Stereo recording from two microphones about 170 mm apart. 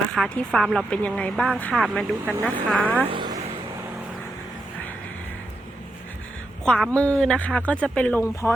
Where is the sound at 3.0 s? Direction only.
25° right (ahead or behind).